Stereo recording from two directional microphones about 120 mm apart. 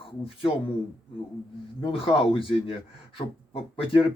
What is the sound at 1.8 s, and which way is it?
Speech, 50° left (ahead or behind).